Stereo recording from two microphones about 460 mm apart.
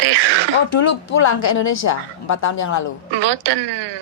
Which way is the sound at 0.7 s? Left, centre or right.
Left.